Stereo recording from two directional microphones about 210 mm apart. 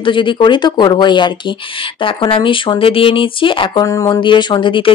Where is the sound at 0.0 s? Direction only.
25° left (ahead or behind).